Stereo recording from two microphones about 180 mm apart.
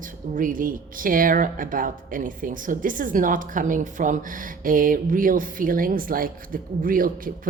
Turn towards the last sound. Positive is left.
turn(degrees=-50)  # may be behind; listen again after turning